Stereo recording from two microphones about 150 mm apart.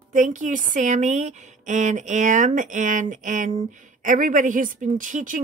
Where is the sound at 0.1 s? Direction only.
55° right (ahead or behind).